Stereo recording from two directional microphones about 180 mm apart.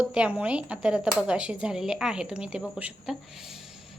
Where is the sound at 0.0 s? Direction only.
5° right (ahead or behind).